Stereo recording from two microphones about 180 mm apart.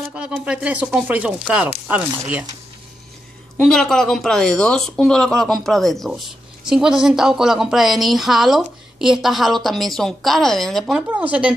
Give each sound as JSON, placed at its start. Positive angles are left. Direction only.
{"t": 0.1, "sound": "speech", "side_deg": -5}
{"t": 3.5, "sound": "speech", "side_deg": 5}